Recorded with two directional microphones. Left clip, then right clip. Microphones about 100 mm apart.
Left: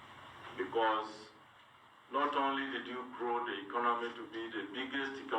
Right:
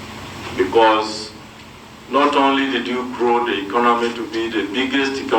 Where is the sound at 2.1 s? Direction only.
30° right (ahead or behind).